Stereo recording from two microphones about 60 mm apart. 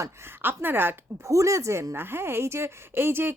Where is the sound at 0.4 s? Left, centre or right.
Right.